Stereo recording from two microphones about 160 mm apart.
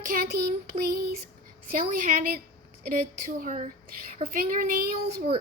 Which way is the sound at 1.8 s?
60° right (ahead or behind).